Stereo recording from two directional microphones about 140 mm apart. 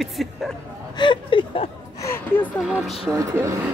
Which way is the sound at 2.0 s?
20° left (ahead or behind).